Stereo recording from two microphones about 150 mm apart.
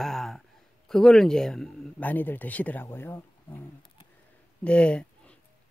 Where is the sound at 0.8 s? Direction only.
5° left (ahead or behind).